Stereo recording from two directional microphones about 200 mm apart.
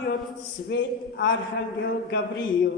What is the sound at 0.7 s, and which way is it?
Speech, 70° left (ahead or behind).